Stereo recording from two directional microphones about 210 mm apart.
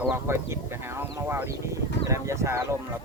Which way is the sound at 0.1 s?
10° right (ahead or behind).